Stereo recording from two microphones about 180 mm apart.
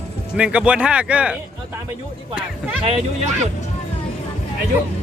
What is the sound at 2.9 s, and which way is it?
Speech, 35° right (ahead or behind).